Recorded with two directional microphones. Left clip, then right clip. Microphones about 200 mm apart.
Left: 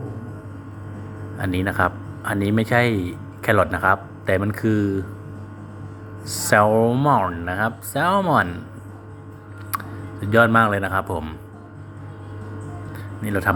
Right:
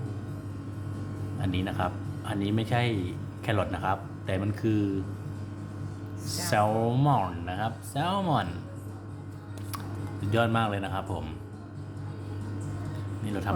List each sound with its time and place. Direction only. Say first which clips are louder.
1.4 s speech: left 10 dB; 40° left (ahead or behind)
6.2 s speech: left 9 dB; 35° left (ahead or behind)
9.7 s speech: left 11 dB; 35° left (ahead or behind)
13.2 s speech: left 12 dB; 40° left (ahead or behind)